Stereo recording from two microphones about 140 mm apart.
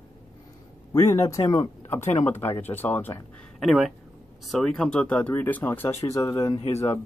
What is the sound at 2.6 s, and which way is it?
Speech, 15° left (ahead or behind).